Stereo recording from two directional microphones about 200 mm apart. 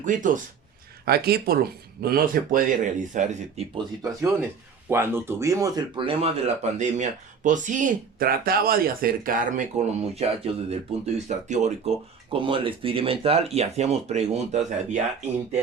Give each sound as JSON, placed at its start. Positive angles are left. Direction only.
{"t": 0.0, "sound": "speech", "side_deg": -40}
{"t": 1.0, "sound": "speech", "side_deg": -50}
{"t": 4.0, "sound": "speech", "side_deg": -15}
{"t": 12.3, "sound": "speech", "side_deg": -25}